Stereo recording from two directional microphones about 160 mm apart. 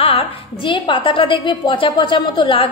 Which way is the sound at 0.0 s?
35° left (ahead or behind).